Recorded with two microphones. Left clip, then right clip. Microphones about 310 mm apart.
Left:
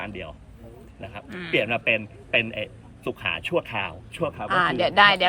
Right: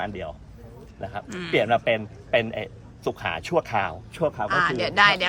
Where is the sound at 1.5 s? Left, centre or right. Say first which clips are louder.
Right 1 dB; right.